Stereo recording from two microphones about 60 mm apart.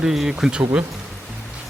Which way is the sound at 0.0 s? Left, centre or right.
Centre.